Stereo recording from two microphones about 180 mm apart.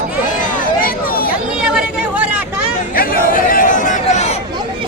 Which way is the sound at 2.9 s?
50° left (ahead or behind).